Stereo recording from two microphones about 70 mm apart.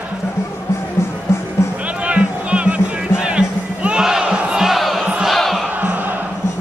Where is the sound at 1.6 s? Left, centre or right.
Left.